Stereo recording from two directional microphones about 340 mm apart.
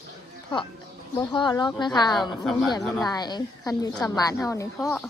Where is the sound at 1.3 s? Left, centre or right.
Centre.